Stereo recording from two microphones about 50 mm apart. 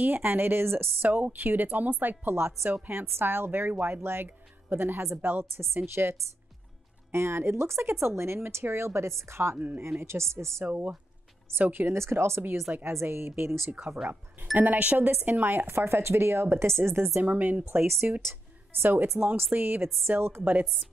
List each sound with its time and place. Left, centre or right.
0.0 s a woman's voice: right
1.0 s a woman's voice: right
7.1 s a woman's voice: right
10.6 s speech: right
11.5 s a woman's voice: right
12.0 s a woman's voice: right
12.7 s speech: right
13.0 s a woman's voice: right
14.6 s speech: right
15.7 s a woman's voice: right
17.2 s speech: right
18.8 s a woman's voice: right